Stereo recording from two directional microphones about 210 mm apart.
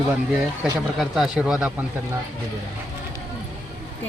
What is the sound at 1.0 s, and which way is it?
Speech, 5° right (ahead or behind).